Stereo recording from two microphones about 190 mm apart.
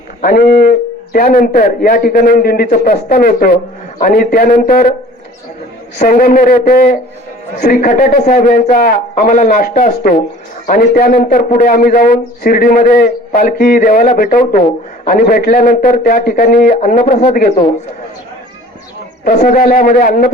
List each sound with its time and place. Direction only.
0.2 s a man's voice: 55° left (ahead or behind)
6.0 s a man's voice: 45° left (ahead or behind)
19.2 s a man's voice: 45° left (ahead or behind)